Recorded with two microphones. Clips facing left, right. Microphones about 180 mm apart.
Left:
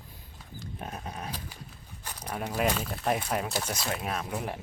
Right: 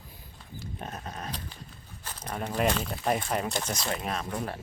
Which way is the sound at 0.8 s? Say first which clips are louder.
Left 1 dB; 5° left (ahead or behind).